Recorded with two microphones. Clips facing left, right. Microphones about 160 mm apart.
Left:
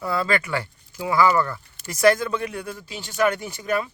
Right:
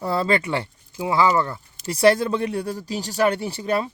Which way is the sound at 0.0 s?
30° right (ahead or behind).